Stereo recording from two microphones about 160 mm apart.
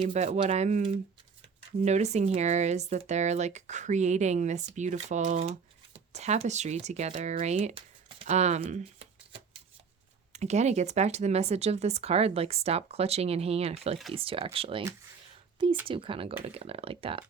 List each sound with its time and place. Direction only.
0.1 s speech: 45° right (ahead or behind)
8.3 s speech: 45° right (ahead or behind)
10.3 s speech: 45° right (ahead or behind)
15.9 s speech: 35° right (ahead or behind)